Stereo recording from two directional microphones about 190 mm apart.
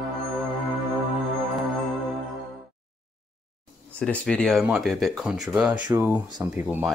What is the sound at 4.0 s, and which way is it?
Speech, 5° left (ahead or behind).